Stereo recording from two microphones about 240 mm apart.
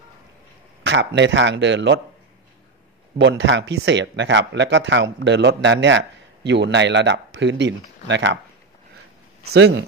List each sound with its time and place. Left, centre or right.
0.8 s speech: right
3.2 s speech: right
9.4 s speech: right